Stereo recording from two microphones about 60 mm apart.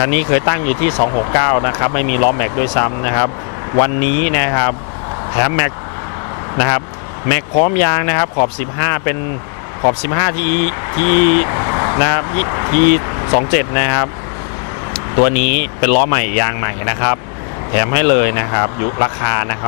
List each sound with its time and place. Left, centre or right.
0.0 s speech: left
15.1 s speech: left